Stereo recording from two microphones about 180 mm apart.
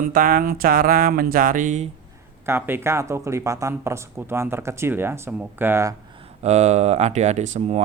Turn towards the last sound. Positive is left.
turn(degrees=-40)  # may be behind; listen again after turning